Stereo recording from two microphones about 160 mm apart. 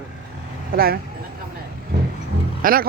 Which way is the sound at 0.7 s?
70° right (ahead or behind).